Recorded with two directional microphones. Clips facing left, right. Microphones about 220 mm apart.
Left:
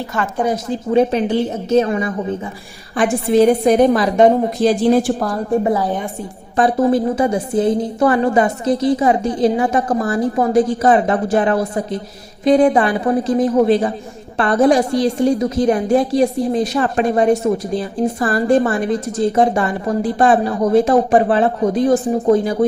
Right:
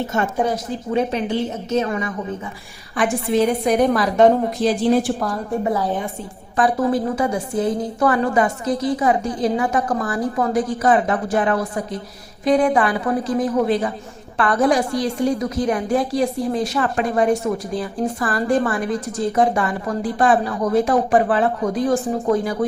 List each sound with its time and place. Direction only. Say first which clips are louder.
0.0 s speech: right 1 dB; 25° right (ahead or behind)
0.5 s a woman's voice: left 6 dB; 35° left (ahead or behind)
4.6 s a woman's voice: left 4 dB; 40° left (ahead or behind)
6.6 s a woman's voice: left 4 dB; 25° left (ahead or behind)